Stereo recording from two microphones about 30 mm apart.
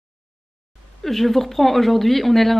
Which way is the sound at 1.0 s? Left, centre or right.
Centre.